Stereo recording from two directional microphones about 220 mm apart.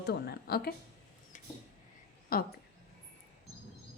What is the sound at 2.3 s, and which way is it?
Speech, 40° left (ahead or behind).